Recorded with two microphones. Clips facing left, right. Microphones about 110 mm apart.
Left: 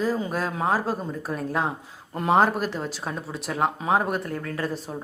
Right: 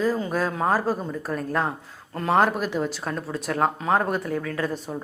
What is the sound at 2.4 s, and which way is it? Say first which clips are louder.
Speech: right 1 dB; centre (ahead or behind).